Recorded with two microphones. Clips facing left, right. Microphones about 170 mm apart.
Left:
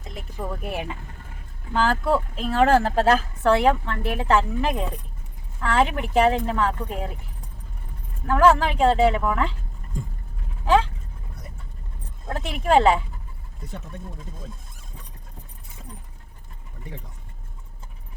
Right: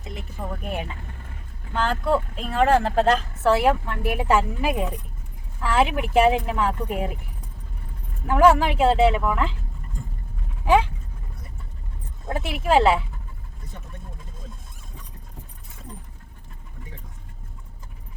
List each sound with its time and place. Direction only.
0.6 s speech: 5° left (ahead or behind); by 7.2 s 15° right (ahead or behind)
8.3 s speech: 15° right (ahead or behind)
12.3 s speech: 5° right (ahead or behind)